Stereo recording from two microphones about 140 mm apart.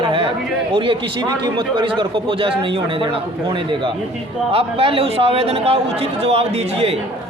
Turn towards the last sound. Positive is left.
turn(degrees=-45)  # may be behind; listen again after turning